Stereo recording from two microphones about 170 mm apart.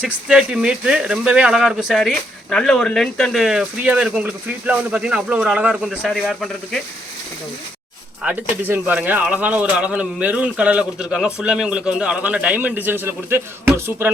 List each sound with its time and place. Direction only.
0.0 s speech: 5° right (ahead or behind)
8.2 s speech: 10° right (ahead or behind)